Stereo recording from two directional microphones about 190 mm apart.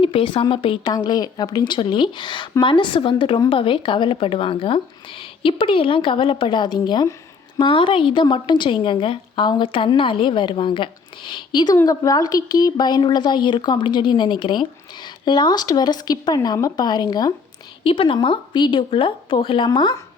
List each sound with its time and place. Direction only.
0.0 s speech: 25° left (ahead or behind)